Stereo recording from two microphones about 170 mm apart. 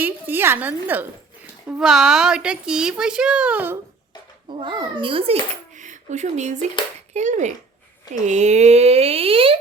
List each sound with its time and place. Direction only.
0.0 s a woman's voice: 10° right (ahead or behind)
4.4 s a child's voice: 30° right (ahead or behind)